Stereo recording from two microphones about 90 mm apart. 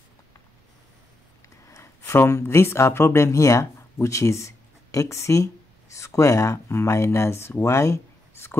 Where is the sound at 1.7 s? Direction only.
30° left (ahead or behind).